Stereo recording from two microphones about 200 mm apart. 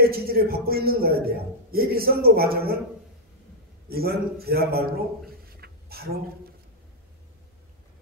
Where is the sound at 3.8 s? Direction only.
50° right (ahead or behind).